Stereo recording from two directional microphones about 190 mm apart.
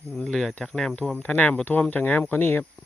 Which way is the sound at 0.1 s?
5° left (ahead or behind).